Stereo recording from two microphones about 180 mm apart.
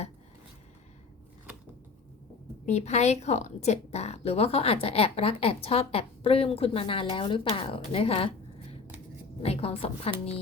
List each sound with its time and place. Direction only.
2.6 s a woman's voice: 40° left (ahead or behind)
9.4 s a woman's voice: 35° left (ahead or behind)